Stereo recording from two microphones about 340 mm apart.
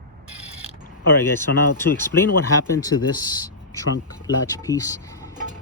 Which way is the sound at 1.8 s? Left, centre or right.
Centre.